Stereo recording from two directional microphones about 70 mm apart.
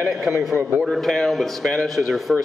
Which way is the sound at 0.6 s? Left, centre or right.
Right.